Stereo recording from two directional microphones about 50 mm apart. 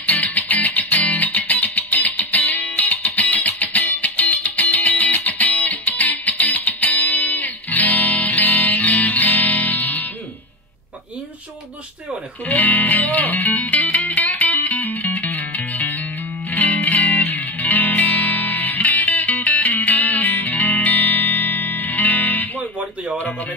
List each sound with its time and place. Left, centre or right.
0.0 s music: left
12.4 s music: left
22.8 s music: right